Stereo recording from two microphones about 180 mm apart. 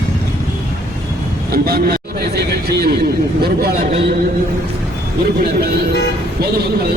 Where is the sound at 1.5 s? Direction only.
60° right (ahead or behind).